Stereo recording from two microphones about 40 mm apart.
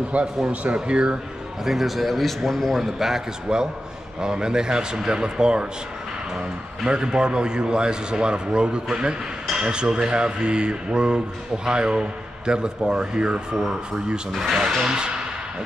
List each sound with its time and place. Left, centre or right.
0.1 s speech: right
0.8 s speech: right
1.6 s a man's voice: centre
2.8 s a man's voice: centre
14.3 s a man's voice: centre
14.9 s speech: right